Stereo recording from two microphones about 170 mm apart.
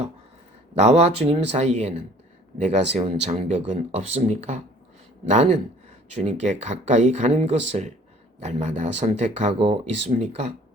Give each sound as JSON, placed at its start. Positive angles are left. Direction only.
{"t": 0.8, "sound": "speech", "side_deg": -40}
{"t": 9.6, "sound": "speech", "side_deg": -30}
{"t": 10.1, "sound": "speech", "side_deg": -40}